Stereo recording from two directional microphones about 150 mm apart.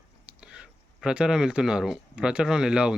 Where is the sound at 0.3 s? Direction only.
5° right (ahead or behind).